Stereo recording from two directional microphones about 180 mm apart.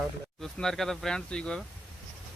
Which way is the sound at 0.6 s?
Centre (ahead or behind).